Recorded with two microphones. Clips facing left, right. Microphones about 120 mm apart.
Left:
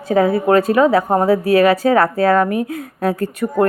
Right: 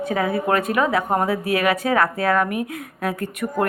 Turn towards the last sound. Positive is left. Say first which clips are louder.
# left 6 dB
turn(degrees=35)  # may be behind; listen again after turning